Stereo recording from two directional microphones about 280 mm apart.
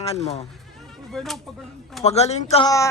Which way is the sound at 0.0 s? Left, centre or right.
Left.